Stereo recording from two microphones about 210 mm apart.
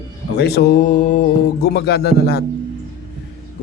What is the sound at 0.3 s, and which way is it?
Speech, 50° left (ahead or behind).